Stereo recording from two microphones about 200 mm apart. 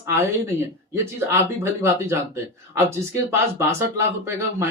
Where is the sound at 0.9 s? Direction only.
15° right (ahead or behind).